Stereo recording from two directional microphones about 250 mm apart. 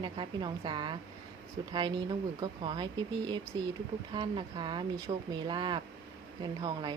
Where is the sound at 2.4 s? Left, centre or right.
Centre.